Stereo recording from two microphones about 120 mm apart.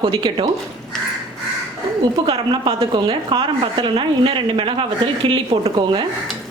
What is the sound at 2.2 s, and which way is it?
A woman's voice, 50° right (ahead or behind).